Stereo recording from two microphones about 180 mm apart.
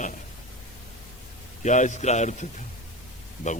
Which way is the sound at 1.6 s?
40° left (ahead or behind).